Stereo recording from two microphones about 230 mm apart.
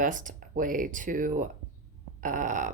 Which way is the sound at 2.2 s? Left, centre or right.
Right.